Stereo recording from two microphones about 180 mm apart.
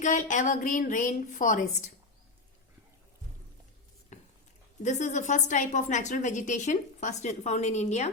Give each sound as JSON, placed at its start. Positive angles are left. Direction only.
{"t": 0.0, "sound": "a woman's voice", "side_deg": 45}
{"t": 4.1, "sound": "a sound", "side_deg": 40}
{"t": 4.8, "sound": "a woman's voice", "side_deg": 40}